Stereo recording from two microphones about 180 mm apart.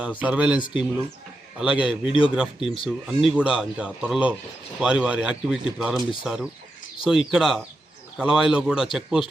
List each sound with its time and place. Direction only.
0.0 s speech: 5° right (ahead or behind)
0.6 s speech: 25° left (ahead or behind)
1.5 s a man's voice: 5° right (ahead or behind)
2.0 s speech: 30° left (ahead or behind)
2.3 s a man's voice: 5° right (ahead or behind)